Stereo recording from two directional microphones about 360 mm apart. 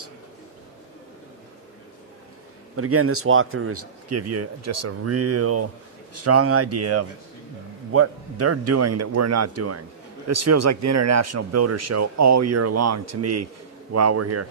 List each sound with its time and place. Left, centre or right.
2.7 s speech: right